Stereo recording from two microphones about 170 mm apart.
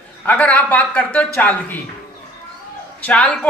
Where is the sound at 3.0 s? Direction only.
5° left (ahead or behind).